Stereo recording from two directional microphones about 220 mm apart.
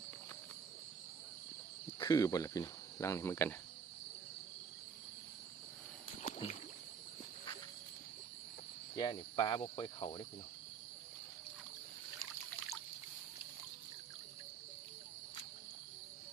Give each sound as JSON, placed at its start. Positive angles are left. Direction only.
{"t": 2.0, "sound": "speech", "side_deg": 15}
{"t": 6.2, "sound": "rowboat", "side_deg": 35}
{"t": 9.0, "sound": "speech", "side_deg": 20}